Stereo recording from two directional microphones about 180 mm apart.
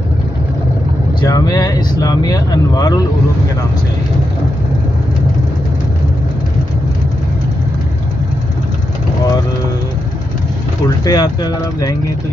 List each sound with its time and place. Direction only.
1.2 s speech: 20° left (ahead or behind)
11.1 s speech: 20° left (ahead or behind)